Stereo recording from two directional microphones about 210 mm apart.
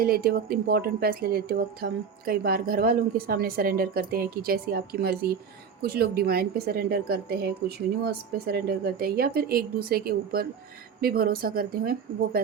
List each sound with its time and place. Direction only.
0.0 s speech: 45° right (ahead or behind)